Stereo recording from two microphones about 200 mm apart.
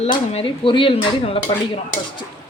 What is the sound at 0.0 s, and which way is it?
Speech, 30° left (ahead or behind).